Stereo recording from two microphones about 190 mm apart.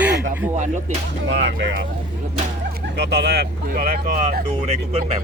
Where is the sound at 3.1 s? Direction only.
60° right (ahead or behind).